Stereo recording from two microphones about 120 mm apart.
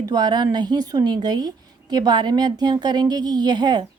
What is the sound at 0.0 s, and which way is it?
A woman's voice, 35° right (ahead or behind).